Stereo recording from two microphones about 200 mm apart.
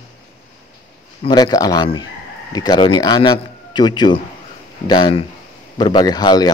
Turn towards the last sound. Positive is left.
turn(degrees=20)  # may be behind; listen again after turning